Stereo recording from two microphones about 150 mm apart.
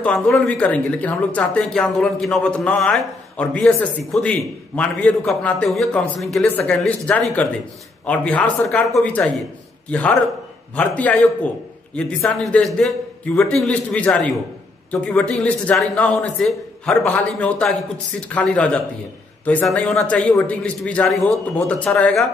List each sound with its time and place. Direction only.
0.5 s speech: 10° left (ahead or behind)